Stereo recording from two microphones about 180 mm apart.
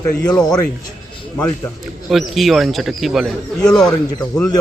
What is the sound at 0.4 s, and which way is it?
Speech, 20° left (ahead or behind).